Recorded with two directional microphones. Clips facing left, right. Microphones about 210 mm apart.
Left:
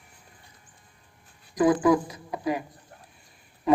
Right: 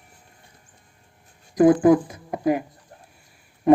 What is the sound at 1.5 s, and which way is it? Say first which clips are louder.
Speech: right 6 dB; 50° right (ahead or behind).